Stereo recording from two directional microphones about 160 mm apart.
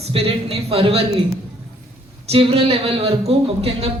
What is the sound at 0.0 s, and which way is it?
A man's voice, 40° right (ahead or behind).